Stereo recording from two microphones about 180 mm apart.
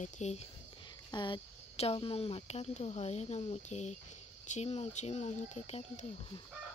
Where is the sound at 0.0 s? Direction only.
40° left (ahead or behind).